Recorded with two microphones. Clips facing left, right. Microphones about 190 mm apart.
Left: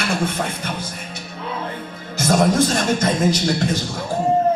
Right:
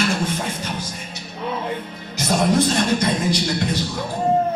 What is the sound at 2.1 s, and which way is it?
A man's voice, 45° left (ahead or behind).